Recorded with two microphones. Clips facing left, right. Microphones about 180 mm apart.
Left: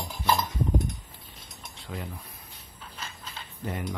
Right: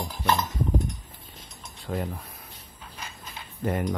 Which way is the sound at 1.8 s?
50° right (ahead or behind).